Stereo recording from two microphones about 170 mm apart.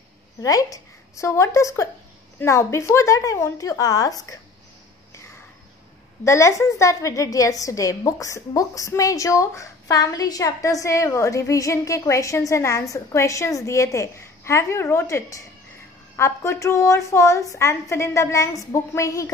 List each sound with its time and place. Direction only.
0.4 s a woman's voice: 20° left (ahead or behind)
6.2 s a woman's voice: 15° left (ahead or behind)